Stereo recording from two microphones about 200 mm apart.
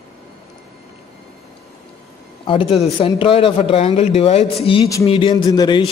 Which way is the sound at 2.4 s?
25° left (ahead or behind).